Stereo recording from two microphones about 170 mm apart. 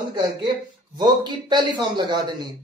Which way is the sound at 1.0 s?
25° right (ahead or behind).